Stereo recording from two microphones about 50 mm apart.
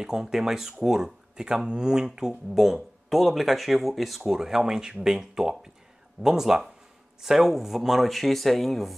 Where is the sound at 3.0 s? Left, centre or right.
Centre.